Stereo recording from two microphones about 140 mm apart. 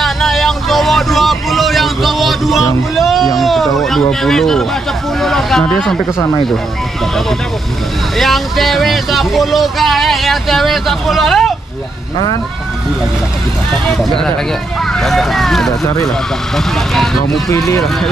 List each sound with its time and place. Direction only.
0.0 s vehicle: centre (ahead or behind)
3.3 s a sound: centre (ahead or behind)
8.2 s speech: centre (ahead or behind)
14.9 s speech: centre (ahead or behind)